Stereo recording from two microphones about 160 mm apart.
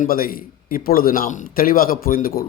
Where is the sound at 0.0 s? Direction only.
65° left (ahead or behind).